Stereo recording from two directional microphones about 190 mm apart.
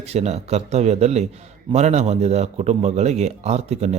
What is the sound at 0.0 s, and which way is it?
A man's voice, 35° right (ahead or behind).